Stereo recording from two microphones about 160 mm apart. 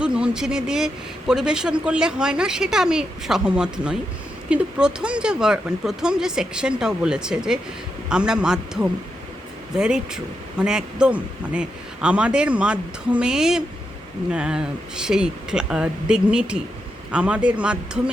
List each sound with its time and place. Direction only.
0.0 s speech: 5° right (ahead or behind)